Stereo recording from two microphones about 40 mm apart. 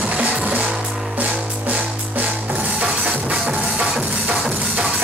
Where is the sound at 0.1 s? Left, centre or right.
Right.